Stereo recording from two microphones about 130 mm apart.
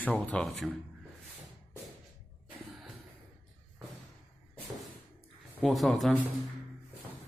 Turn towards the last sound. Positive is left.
turn(degrees=0)  # may be behind; listen again after turning